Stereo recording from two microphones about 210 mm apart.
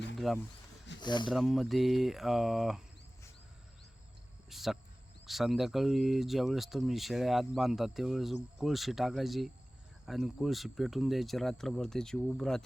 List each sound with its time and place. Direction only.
0.3 s speech: centre (ahead or behind)
1.0 s speech: 20° left (ahead or behind)
1.3 s speech: centre (ahead or behind)
4.4 s cricket: centre (ahead or behind)
5.2 s speech: centre (ahead or behind)